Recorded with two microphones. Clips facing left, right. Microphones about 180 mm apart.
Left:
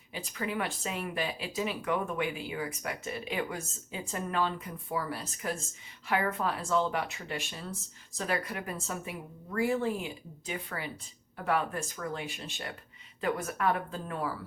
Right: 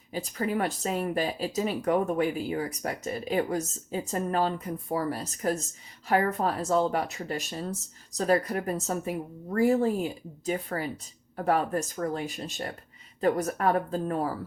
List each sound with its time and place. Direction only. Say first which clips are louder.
0.1 s speech: right 6 dB; 40° right (ahead or behind)